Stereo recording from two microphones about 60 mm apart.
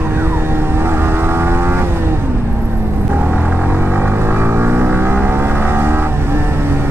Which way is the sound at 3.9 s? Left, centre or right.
Right.